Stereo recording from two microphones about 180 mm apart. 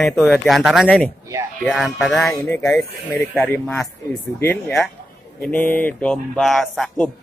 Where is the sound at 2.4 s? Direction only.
15° left (ahead or behind).